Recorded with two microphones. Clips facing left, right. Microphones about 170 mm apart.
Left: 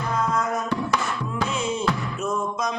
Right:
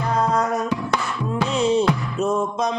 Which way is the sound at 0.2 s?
35° right (ahead or behind).